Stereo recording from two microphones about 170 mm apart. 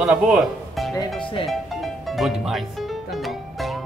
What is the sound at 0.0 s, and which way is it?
Speech, 5° right (ahead or behind).